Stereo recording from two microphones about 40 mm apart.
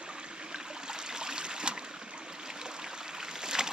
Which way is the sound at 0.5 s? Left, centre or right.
Centre.